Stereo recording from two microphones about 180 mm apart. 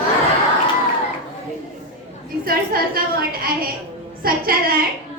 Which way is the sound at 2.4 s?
55° right (ahead or behind).